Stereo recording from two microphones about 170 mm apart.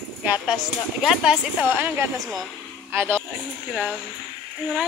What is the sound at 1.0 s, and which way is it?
Speech, 5° right (ahead or behind).